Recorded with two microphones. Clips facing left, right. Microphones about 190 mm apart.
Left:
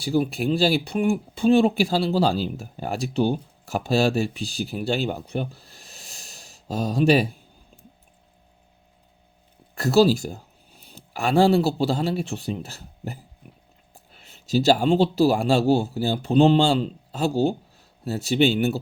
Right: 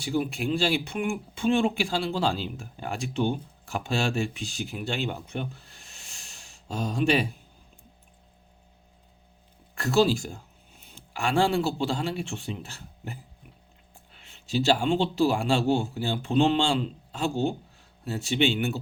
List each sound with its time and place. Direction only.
0.0 s speech: 35° left (ahead or behind)
9.7 s speech: 40° left (ahead or behind)
13.5 s a sound: 45° left (ahead or behind)
13.9 s speech: 40° left (ahead or behind)